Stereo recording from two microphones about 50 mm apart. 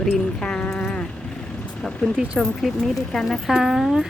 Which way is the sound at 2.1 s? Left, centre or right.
Right.